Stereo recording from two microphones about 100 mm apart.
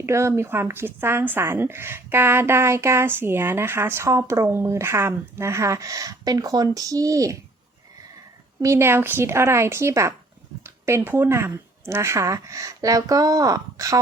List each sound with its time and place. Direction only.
0.0 s speech: 30° right (ahead or behind)
8.6 s speech: 25° right (ahead or behind)